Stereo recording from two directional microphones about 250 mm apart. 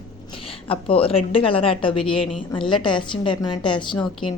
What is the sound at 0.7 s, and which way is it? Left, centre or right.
Speech, left.